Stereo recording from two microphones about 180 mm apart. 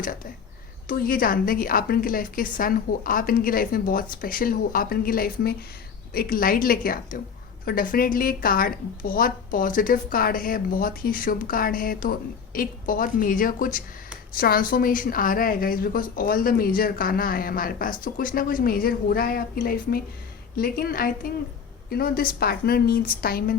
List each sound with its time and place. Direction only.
0.9 s a woman's voice: 55° left (ahead or behind)